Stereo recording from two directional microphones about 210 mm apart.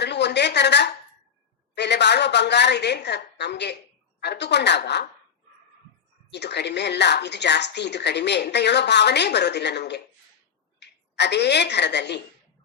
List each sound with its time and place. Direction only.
0.0 s a sound: 55° left (ahead or behind)
1.7 s a woman's voice: 55° left (ahead or behind)
6.3 s a woman's voice: 55° left (ahead or behind)